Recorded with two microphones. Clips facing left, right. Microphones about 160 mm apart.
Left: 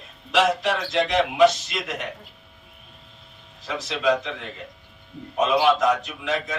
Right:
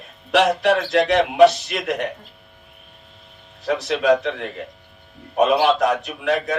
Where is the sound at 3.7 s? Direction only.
65° right (ahead or behind).